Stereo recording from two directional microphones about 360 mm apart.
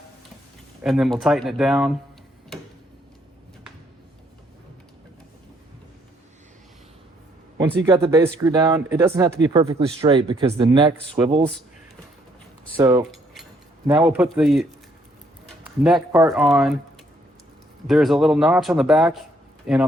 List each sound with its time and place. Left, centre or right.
0.8 s speech: centre
7.9 s speech: centre
12.7 s speech: centre
15.8 s speech: centre
17.8 s speech: centre